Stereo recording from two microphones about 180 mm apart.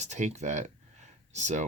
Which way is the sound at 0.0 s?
40° right (ahead or behind).